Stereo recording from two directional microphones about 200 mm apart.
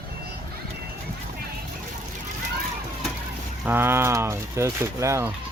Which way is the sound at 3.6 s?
10° right (ahead or behind).